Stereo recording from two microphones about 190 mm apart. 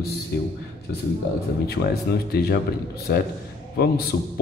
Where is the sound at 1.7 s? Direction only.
55° left (ahead or behind).